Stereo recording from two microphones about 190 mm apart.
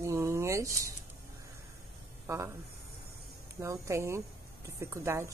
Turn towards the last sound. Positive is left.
turn(degrees=-15)  # may be behind; listen again after turning